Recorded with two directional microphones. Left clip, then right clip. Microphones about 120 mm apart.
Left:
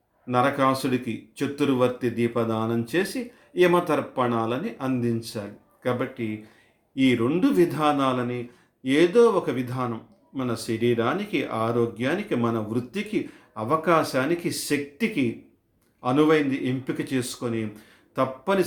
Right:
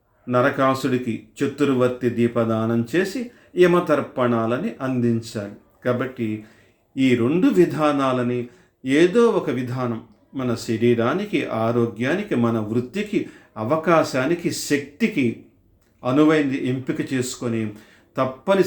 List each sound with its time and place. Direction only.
0.3 s speech: 25° left (ahead or behind)